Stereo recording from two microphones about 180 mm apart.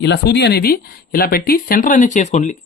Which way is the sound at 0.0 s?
70° left (ahead or behind).